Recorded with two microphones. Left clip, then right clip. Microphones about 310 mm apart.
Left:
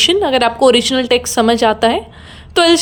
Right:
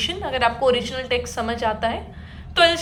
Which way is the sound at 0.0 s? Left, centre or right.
Centre.